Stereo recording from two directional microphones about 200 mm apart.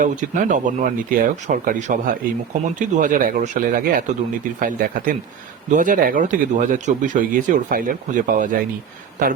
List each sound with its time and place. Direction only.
0.0 s speech: 40° right (ahead or behind)